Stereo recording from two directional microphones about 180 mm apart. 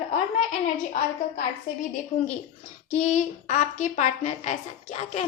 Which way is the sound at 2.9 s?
40° left (ahead or behind).